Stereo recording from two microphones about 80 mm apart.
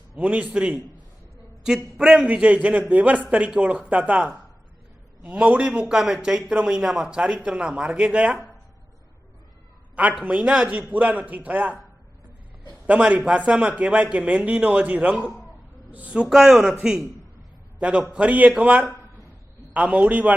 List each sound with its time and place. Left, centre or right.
0.2 s a man's voice: centre
2.0 s a man's voice: centre
9.9 s a man's voice: centre
12.9 s a man's voice: centre